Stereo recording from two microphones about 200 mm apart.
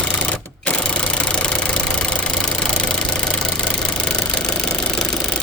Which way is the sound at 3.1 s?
5° left (ahead or behind).